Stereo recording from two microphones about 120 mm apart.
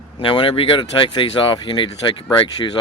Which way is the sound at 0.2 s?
45° left (ahead or behind).